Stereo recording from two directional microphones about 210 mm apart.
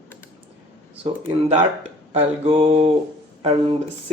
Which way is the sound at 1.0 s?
30° right (ahead or behind).